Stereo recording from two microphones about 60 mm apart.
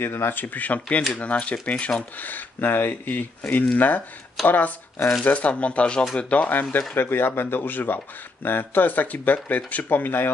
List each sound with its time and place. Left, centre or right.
0.0 s speech: left
7.0 s speech: left